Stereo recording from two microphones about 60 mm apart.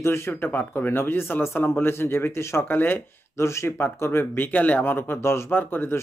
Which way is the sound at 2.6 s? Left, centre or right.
Left.